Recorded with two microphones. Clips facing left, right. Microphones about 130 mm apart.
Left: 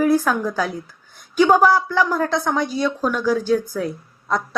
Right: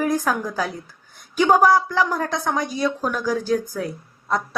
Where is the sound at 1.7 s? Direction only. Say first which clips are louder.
Even; 35° right (ahead or behind).